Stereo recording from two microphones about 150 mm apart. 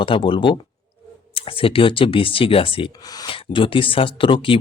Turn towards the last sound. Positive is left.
turn(degrees=35)  # may be behind; listen again after turning